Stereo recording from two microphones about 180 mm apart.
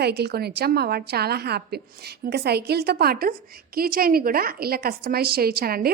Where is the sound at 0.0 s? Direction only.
65° right (ahead or behind).